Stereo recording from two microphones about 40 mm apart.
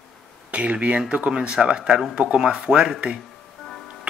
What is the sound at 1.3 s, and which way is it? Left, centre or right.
Speech, right.